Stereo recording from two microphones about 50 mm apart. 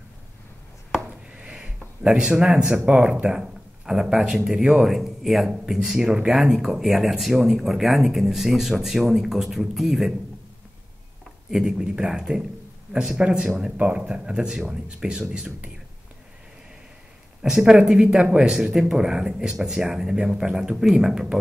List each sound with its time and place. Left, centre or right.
1.3 s speech: right
11.5 s speech: centre
17.4 s speech: centre